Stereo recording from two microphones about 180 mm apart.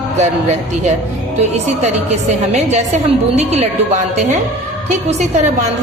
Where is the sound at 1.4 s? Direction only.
40° right (ahead or behind).